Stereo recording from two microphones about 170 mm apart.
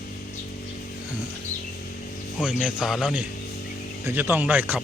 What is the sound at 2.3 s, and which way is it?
A man's voice, 5° right (ahead or behind).